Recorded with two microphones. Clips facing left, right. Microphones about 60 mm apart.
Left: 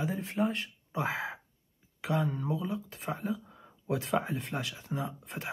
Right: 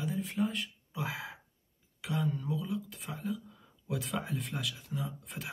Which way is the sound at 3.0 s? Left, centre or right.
Left.